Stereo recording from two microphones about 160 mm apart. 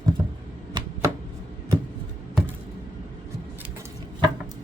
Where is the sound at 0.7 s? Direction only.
30° right (ahead or behind).